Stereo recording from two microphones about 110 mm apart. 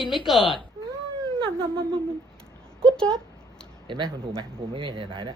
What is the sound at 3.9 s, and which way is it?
Speech, 45° right (ahead or behind).